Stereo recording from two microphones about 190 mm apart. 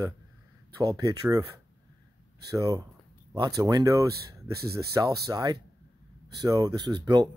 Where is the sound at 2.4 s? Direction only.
20° right (ahead or behind).